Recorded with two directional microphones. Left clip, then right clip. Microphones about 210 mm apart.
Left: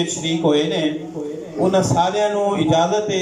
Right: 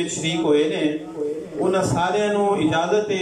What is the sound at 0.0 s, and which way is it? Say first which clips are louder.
Speech: left 3 dB; 25° left (ahead or behind).